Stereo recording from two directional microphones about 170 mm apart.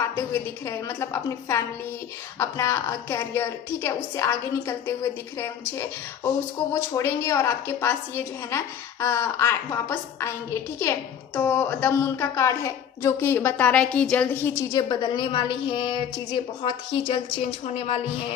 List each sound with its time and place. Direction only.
0.2 s a woman's voice: 15° left (ahead or behind)
14.8 s a woman's voice: 25° left (ahead or behind)